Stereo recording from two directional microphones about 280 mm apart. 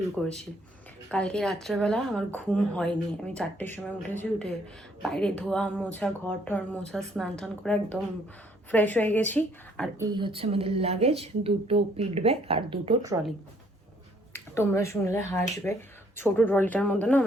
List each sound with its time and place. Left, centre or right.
0.2 s a woman's voice: centre
10.0 s a woman's voice: centre
14.5 s a woman's voice: centre